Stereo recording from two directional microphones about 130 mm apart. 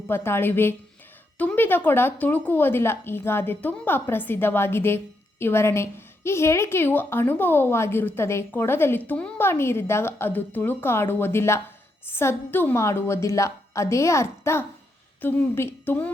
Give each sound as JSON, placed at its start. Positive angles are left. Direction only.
{"t": 0.1, "sound": "a woman's voice", "side_deg": 20}